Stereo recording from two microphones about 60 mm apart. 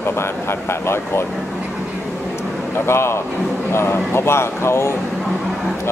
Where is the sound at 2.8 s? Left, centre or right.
Left.